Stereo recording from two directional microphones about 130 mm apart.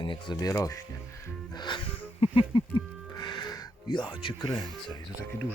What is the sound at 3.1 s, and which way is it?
Music, 35° left (ahead or behind).